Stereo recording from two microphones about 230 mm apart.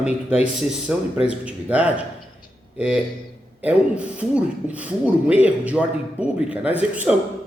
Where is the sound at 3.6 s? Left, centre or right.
Centre.